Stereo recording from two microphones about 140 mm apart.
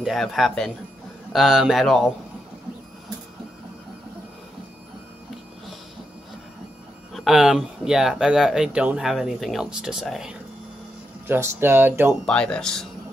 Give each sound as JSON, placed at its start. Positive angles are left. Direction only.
{"t": 0.0, "sound": "speech", "side_deg": 0}
{"t": 7.2, "sound": "speech", "side_deg": -5}
{"t": 11.2, "sound": "speech", "side_deg": -15}
{"t": 12.3, "sound": "speech", "side_deg": 5}